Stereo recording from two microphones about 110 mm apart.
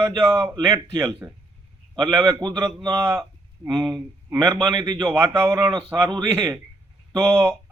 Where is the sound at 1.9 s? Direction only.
35° right (ahead or behind).